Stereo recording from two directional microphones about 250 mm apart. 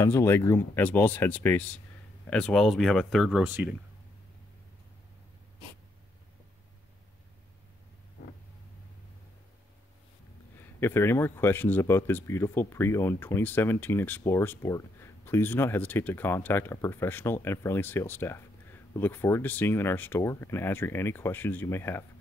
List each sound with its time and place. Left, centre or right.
0.0 s speech: centre
10.6 s speech: centre